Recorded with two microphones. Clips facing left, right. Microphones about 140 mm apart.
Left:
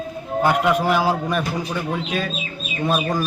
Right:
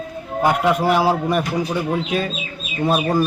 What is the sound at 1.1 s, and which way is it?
Speech, 30° right (ahead or behind).